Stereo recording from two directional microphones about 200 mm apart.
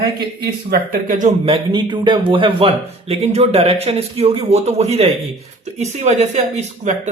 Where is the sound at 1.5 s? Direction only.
25° right (ahead or behind).